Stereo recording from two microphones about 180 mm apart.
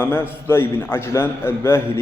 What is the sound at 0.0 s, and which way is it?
A man's voice, 15° left (ahead or behind).